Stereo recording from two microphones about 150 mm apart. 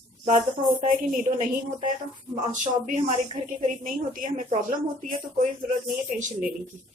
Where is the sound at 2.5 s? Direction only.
55° right (ahead or behind).